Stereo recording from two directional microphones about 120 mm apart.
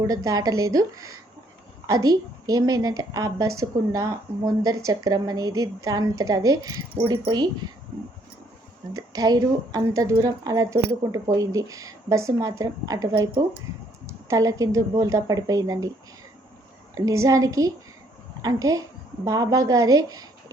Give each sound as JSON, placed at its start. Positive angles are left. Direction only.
{"t": 0.1, "sound": "a woman's voice", "side_deg": -30}
{"t": 8.9, "sound": "speech", "side_deg": -30}
{"t": 16.9, "sound": "speech", "side_deg": -30}